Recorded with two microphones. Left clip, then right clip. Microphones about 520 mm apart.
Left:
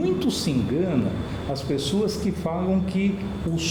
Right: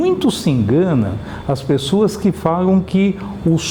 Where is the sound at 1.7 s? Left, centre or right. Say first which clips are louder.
Right 9 dB; right.